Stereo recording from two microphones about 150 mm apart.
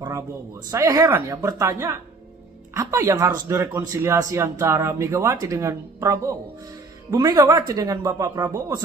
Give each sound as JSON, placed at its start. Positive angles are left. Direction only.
{"t": 0.7, "sound": "a man's voice", "side_deg": -20}